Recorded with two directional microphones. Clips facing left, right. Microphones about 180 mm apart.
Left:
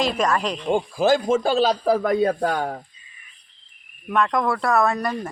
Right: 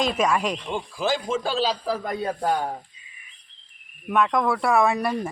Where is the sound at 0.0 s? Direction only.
5° right (ahead or behind).